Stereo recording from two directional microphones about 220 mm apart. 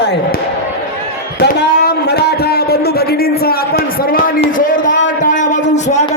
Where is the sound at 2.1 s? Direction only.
45° left (ahead or behind).